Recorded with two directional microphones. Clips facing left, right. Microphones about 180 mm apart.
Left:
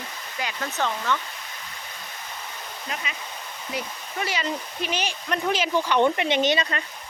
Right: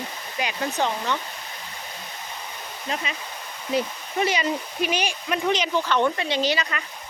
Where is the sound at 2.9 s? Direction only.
30° right (ahead or behind).